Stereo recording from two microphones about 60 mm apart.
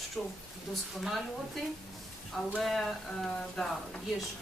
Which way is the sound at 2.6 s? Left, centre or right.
Centre.